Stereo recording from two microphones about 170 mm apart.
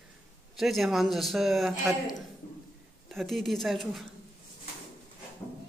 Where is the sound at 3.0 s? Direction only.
Centre (ahead or behind).